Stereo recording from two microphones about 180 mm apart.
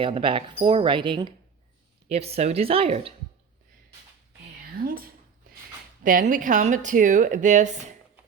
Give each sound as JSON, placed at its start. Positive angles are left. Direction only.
{"t": 0.0, "sound": "speech", "side_deg": -30}
{"t": 4.8, "sound": "speech", "side_deg": -55}